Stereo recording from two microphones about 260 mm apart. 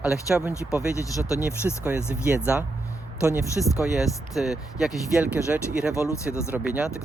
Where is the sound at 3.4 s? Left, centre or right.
Centre.